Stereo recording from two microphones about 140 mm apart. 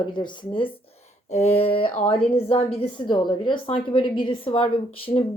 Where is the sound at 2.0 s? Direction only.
40° left (ahead or behind).